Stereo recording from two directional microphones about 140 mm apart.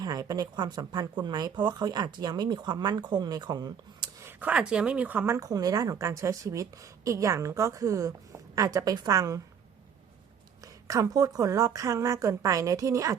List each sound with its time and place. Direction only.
0.0 s speech: 25° right (ahead or behind)
4.3 s speech: 10° right (ahead or behind)
10.6 s speech: 25° right (ahead or behind)